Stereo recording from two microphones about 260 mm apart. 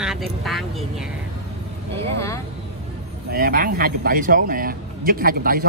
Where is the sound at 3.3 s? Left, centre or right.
Right.